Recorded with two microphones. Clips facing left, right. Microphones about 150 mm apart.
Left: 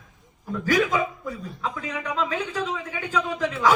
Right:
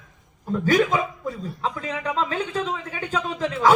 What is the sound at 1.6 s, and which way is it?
Speech, 30° right (ahead or behind).